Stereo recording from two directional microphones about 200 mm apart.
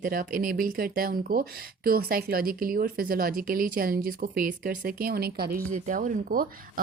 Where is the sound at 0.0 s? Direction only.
45° right (ahead or behind).